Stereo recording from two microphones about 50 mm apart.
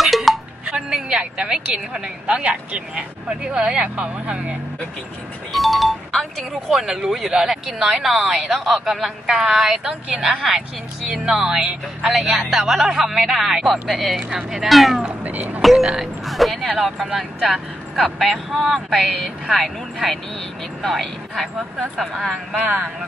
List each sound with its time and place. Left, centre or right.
0.0 s music: centre
0.7 s music: centre
1.0 s speech: centre
5.5 s speech: centre
12.1 s speech: centre
15.2 s speech: right
15.6 s speech: centre